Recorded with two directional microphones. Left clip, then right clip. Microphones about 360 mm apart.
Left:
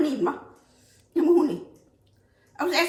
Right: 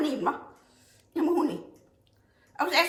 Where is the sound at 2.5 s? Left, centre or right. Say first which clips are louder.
Even; centre.